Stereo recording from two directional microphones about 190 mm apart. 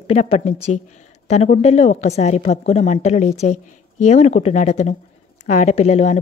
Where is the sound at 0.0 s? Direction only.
35° left (ahead or behind).